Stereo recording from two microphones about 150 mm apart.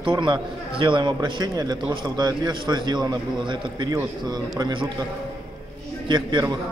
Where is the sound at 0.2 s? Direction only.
30° right (ahead or behind).